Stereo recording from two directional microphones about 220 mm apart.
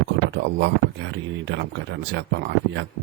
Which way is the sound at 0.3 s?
50° right (ahead or behind).